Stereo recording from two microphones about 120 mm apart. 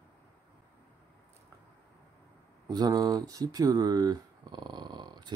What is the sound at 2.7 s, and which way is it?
Speech, 35° right (ahead or behind).